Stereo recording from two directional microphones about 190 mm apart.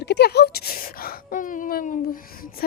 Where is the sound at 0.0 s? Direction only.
60° left (ahead or behind).